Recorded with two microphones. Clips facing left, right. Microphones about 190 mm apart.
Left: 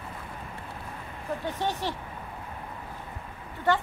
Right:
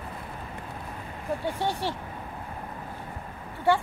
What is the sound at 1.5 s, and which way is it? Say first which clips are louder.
Speech: even; 15° right (ahead or behind).